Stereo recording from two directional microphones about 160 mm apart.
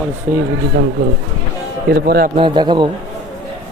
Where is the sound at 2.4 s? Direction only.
30° right (ahead or behind).